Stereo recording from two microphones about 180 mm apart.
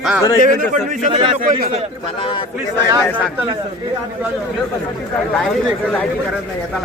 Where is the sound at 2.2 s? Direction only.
30° left (ahead or behind).